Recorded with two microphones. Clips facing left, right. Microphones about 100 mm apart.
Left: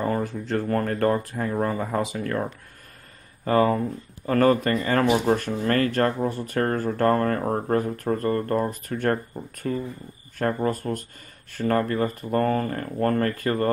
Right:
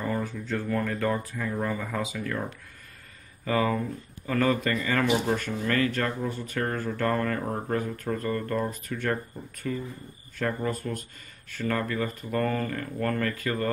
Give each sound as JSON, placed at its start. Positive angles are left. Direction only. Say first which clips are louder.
{"t": 0.6, "sound": "speech", "louder": "left 5 dB", "side_deg": 50}
{"t": 3.4, "sound": "speech", "louder": "left 5 dB", "side_deg": 40}